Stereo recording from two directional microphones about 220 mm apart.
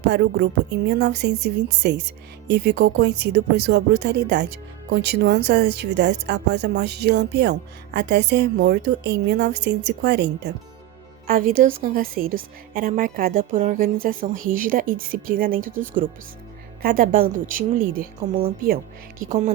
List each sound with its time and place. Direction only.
0.1 s speech: 50° right (ahead or behind)
11.3 s a woman's voice: 40° right (ahead or behind)
19.3 s a woman's voice: 35° right (ahead or behind)